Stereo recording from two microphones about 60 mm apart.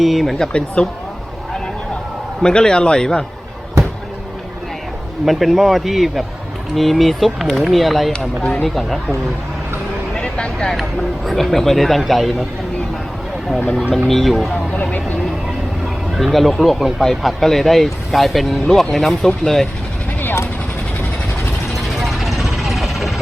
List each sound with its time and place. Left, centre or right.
0.0 s speech: centre
2.4 s a man's voice: centre
5.2 s speech: centre
10.2 s vehicle: centre
11.3 s speech: centre
14.1 s speech: centre
14.7 s speech: left
16.1 s speech: centre
21.8 s vehicle: centre